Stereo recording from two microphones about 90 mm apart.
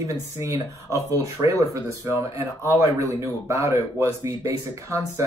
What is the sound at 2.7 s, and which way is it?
Speech, 35° right (ahead or behind).